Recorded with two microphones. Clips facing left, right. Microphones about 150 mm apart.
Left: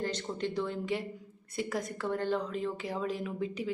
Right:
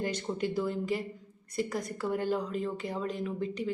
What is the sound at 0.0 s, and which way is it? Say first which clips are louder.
Speech: right 2 dB; 10° right (ahead or behind).